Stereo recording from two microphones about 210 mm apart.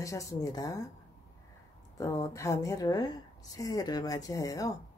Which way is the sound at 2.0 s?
15° left (ahead or behind).